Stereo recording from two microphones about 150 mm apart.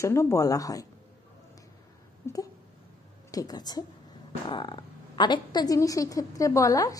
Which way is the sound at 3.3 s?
25° left (ahead or behind).